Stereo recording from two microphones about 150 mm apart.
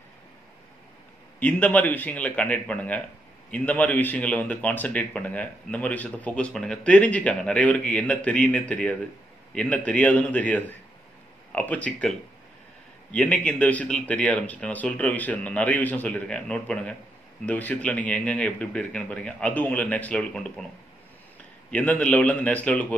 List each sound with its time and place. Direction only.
1.4 s speech: 10° left (ahead or behind)
21.6 s speech: 5° left (ahead or behind)